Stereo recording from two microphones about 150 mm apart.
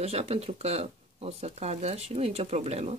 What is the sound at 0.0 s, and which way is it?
Speech, 40° right (ahead or behind).